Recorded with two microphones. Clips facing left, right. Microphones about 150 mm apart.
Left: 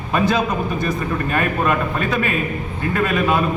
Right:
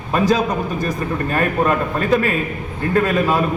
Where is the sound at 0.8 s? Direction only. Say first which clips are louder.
Even; 40° right (ahead or behind).